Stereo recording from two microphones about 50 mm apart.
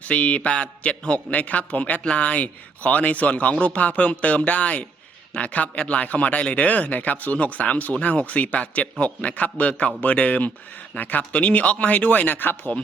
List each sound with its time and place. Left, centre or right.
0.0 s a man's voice: left